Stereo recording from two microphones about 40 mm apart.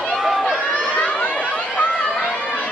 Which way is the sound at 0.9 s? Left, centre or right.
Left.